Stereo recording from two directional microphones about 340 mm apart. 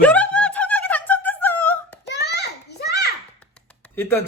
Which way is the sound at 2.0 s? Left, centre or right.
Left.